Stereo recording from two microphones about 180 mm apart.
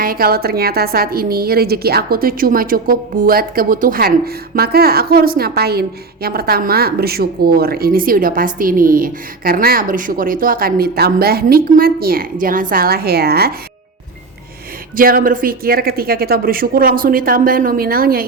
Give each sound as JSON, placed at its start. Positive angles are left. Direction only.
{"t": 0.0, "sound": "a woman's voice", "side_deg": -55}
{"t": 14.9, "sound": "a woman's voice", "side_deg": -50}